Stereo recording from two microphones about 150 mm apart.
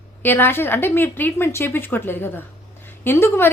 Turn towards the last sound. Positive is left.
turn(degrees=15)  # may be behind; listen again after turning